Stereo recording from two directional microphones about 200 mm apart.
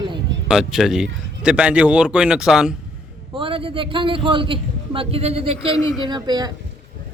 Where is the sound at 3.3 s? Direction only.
25° right (ahead or behind).